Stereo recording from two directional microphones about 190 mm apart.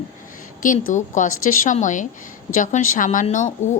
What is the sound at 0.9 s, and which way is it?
Speech, 40° left (ahead or behind).